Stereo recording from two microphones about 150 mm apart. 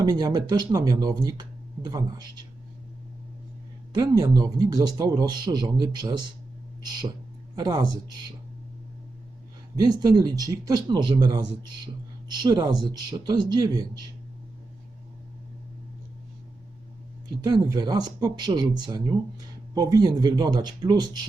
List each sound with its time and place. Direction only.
0.0 s speech: 25° right (ahead or behind)
3.9 s speech: 25° right (ahead or behind)
7.5 s speech: 25° right (ahead or behind)
9.8 s speech: 25° right (ahead or behind)
17.4 s speech: 25° right (ahead or behind)